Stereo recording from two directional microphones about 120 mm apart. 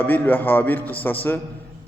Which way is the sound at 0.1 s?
15° left (ahead or behind).